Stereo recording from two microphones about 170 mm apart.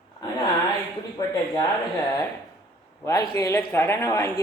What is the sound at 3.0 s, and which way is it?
A man's voice, 20° left (ahead or behind).